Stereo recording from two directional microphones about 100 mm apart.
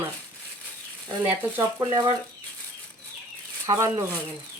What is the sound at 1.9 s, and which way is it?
Speech, 45° right (ahead or behind).